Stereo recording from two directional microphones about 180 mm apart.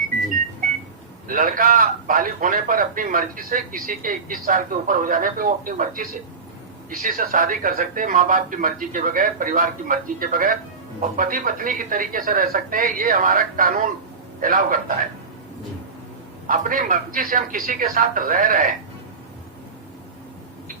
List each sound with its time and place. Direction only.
1.3 s a man's voice: 50° right (ahead or behind)
16.5 s a man's voice: 50° right (ahead or behind)